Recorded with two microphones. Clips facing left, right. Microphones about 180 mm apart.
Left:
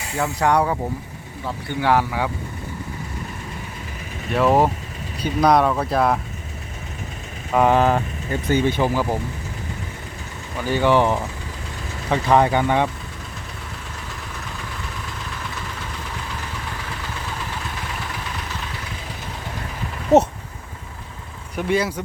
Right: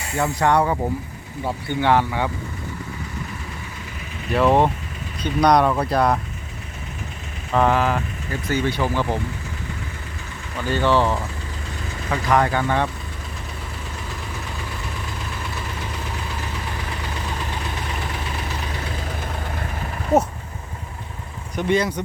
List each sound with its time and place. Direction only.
0.2 s speech: 10° left (ahead or behind)
1.8 s speech: 5° left (ahead or behind)
4.3 s speech: centre (ahead or behind)
7.5 s speech: 15° left (ahead or behind)
7.8 s speech: 25° left (ahead or behind)
8.4 s speech: 15° left (ahead or behind)
10.6 s speech: 15° left (ahead or behind)
20.1 s speech: 25° left (ahead or behind)
21.5 s speech: 5° left (ahead or behind)